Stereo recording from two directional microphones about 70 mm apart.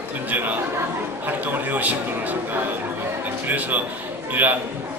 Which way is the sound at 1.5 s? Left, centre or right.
Right.